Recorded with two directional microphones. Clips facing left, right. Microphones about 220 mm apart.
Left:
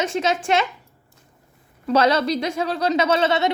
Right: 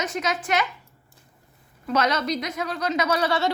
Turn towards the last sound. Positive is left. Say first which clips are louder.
# left 4 dB
turn(degrees=20)  # may be behind; listen again after turning